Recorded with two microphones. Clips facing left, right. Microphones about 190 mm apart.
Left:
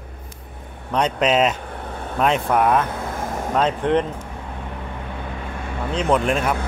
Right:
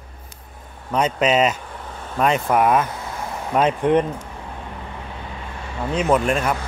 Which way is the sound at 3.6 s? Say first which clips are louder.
Right 2 dB; 10° right (ahead or behind).